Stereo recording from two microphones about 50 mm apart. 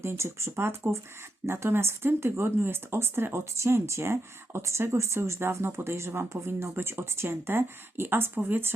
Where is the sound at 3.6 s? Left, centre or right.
Right.